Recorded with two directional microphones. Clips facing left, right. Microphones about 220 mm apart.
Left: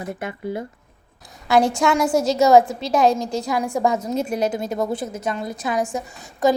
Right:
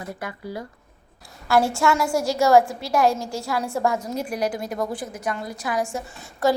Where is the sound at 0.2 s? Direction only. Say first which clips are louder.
Left 5 dB; 25° left (ahead or behind).